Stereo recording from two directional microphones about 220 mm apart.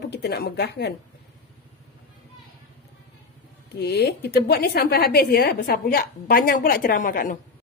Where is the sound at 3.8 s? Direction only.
50° left (ahead or behind).